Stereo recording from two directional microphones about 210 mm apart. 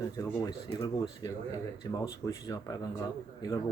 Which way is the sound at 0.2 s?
15° left (ahead or behind).